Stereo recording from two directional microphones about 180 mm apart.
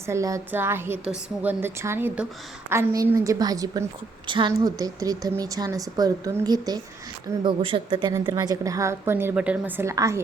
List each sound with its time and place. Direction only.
0.0 s a woman's voice: 15° right (ahead or behind)